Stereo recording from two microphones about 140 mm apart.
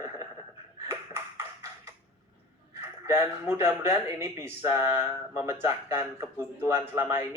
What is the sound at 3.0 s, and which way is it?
Speech, 20° right (ahead or behind).